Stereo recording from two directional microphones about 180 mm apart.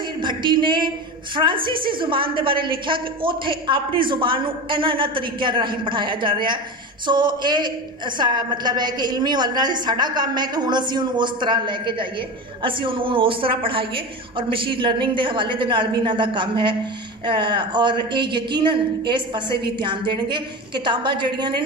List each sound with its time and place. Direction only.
0.2 s a woman's voice: 25° right (ahead or behind)